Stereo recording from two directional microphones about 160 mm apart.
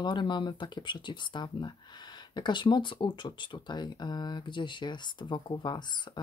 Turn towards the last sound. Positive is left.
turn(degrees=25)  # may be behind; listen again after turning